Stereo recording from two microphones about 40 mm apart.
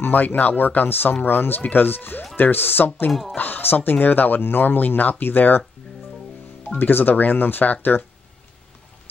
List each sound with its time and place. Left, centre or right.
0.0 s speech: left
3.1 s speech: centre
3.3 s speech: left
4.4 s speech: left
6.8 s speech: left